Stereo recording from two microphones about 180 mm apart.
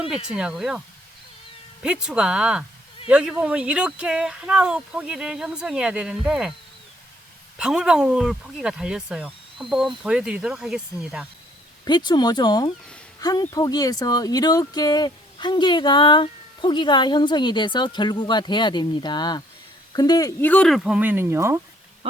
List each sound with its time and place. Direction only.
0.3 s speech: 5° right (ahead or behind)
1.8 s speech: 5° right (ahead or behind)
7.6 s speech: 5° right (ahead or behind)
11.9 s speech: 25° left (ahead or behind)
20.5 s speech: 5° left (ahead or behind); by 21.6 s 15° right (ahead or behind)